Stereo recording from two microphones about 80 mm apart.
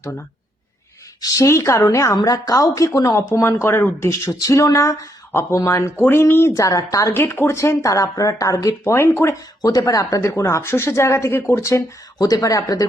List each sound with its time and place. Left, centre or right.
1.2 s speech: left
2.1 s speech: left
7.3 s speech: left
9.6 s speech: left